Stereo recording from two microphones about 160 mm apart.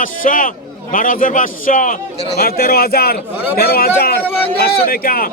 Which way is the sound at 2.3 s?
70° left (ahead or behind).